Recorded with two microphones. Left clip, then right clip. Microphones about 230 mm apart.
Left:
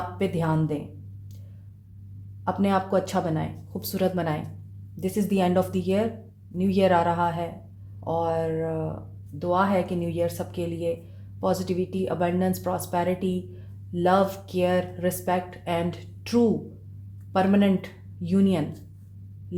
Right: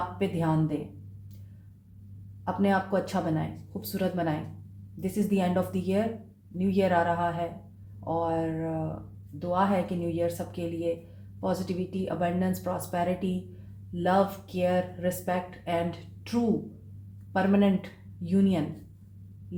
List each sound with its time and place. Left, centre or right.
0.2 s speech: left
2.4 s speech: left